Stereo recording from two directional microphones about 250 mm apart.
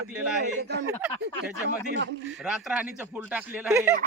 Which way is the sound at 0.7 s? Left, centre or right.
Right.